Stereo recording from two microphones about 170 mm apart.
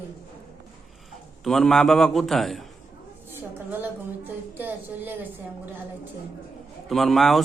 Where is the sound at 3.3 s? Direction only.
15° right (ahead or behind).